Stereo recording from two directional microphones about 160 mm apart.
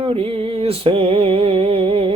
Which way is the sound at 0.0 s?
35° right (ahead or behind).